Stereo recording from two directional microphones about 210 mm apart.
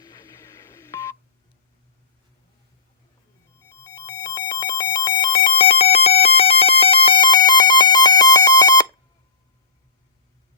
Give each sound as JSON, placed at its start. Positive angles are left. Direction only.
{"t": 0.0, "sound": "telephone dialing", "side_deg": 15}
{"t": 3.7, "sound": "ringtone", "side_deg": 15}